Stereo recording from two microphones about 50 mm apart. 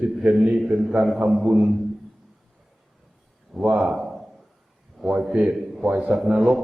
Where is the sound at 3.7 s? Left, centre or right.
Centre.